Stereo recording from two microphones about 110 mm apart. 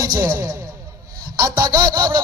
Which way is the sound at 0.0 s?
35° right (ahead or behind).